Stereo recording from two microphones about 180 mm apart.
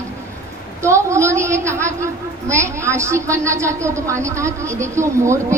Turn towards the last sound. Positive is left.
turn(degrees=-15)  # may be behind; listen again after turning